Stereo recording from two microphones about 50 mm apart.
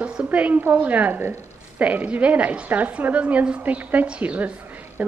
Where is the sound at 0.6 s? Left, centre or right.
Right.